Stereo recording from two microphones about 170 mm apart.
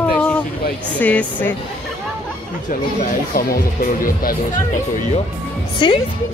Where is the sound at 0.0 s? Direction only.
10° left (ahead or behind).